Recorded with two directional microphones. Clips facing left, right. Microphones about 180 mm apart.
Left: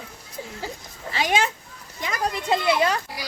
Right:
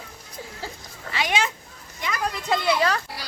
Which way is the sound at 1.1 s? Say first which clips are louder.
Left 2 dB; 40° left (ahead or behind).